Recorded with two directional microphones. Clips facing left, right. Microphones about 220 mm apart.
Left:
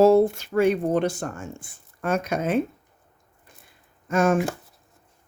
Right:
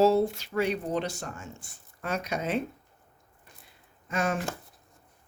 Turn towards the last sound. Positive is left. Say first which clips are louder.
# left 9 dB
turn(degrees=45)  # may be behind; listen again after turning